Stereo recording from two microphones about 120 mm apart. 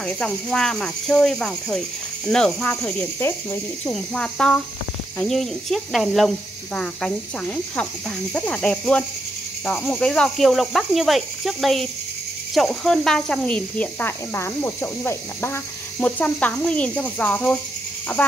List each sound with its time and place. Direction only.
0.0 s speech: 5° left (ahead or behind)
3.2 s speech: 20° left (ahead or behind)
3.9 s speech: 5° left (ahead or behind)